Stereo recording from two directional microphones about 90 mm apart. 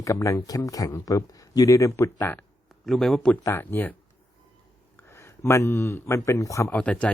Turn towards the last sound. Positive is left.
turn(degrees=15)  # may be behind; listen again after turning